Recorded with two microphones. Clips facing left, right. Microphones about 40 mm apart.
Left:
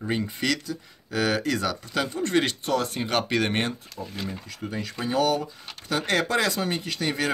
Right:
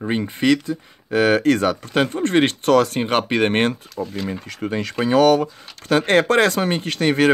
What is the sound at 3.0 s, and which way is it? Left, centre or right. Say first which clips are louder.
Speech: right 6 dB; right.